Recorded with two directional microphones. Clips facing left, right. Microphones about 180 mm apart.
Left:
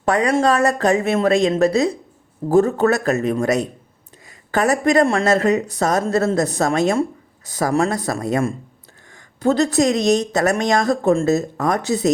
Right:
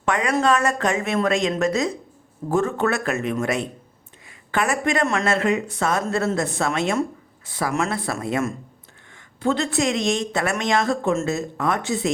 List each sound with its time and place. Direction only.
0.0 s speech: 35° left (ahead or behind)